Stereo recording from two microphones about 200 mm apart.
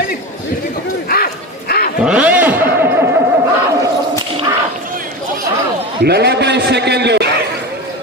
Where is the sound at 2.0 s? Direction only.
5° right (ahead or behind).